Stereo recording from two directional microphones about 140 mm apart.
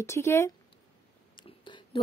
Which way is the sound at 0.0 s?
20° left (ahead or behind).